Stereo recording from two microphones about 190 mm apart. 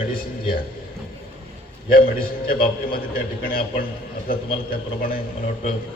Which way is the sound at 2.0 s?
50° left (ahead or behind).